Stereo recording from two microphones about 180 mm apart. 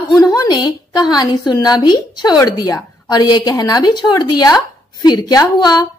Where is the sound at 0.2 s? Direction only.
20° left (ahead or behind).